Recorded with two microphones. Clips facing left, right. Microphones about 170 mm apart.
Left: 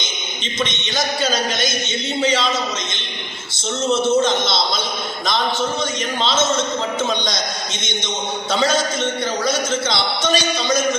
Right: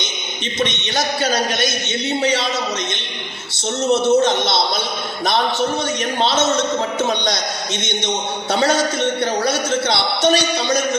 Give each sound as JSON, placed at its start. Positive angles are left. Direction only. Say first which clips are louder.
{"t": 0.9, "sound": "a man's voice", "louder": "right 1 dB", "side_deg": -65}
{"t": 3.9, "sound": "a man's voice", "louder": "right 2 dB", "side_deg": -65}